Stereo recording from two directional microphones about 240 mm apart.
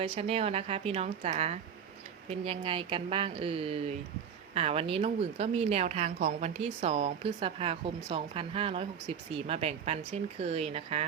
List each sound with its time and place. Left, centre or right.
0.0 s a woman's voice: right